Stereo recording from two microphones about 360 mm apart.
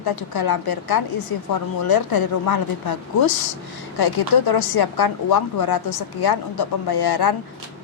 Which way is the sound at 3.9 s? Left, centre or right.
Left.